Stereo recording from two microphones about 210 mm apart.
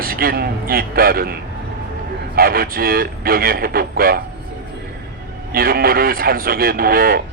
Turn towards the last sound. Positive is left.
turn(degrees=-45)  # may be behind; listen again after turning